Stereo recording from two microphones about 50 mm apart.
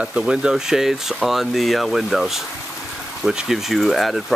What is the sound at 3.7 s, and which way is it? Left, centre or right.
Speech, centre.